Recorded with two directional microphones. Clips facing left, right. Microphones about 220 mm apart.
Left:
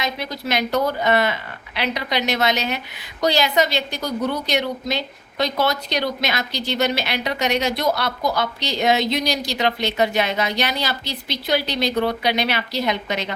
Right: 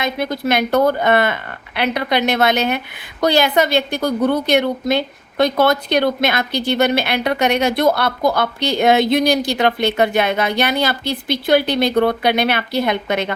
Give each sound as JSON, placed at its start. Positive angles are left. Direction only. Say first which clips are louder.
{"t": 0.0, "sound": "a woman's voice", "louder": "right 6 dB", "side_deg": -55}